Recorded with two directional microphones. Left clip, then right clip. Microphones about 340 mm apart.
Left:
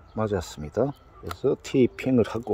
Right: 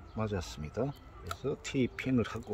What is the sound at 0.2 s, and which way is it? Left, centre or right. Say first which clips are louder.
Speech: left 10 dB; centre.